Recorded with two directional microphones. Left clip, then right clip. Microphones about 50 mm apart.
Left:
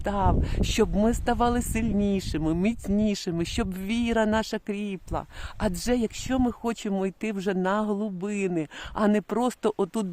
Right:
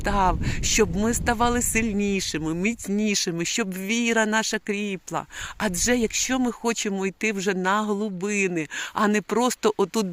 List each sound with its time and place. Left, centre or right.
0.1 s speech: left
0.4 s speech: left
1.0 s speech: left
1.8 s speech: left
2.1 s speech: left
2.9 s speech: left
3.3 s speech: left
7.6 s speech: left